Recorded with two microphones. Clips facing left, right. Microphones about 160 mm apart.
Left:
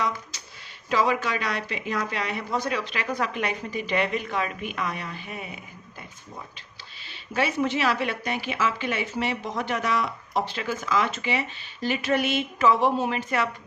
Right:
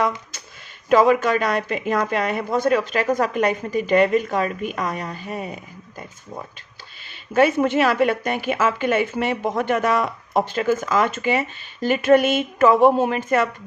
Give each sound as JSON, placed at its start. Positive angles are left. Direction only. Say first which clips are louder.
{"t": 0.0, "sound": "a sound", "louder": "right 6 dB", "side_deg": -50}
{"t": 0.9, "sound": "a woman's voice", "louder": "right 8 dB", "side_deg": -50}
{"t": 7.3, "sound": "a woman's voice", "louder": "right 8 dB", "side_deg": -50}